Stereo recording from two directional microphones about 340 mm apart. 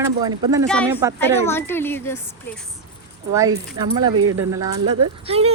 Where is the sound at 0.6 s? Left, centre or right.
Centre.